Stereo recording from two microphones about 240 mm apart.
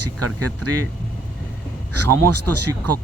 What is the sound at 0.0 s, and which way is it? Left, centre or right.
Speech, right.